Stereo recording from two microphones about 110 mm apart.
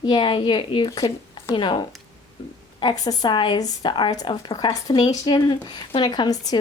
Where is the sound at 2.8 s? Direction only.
45° left (ahead or behind).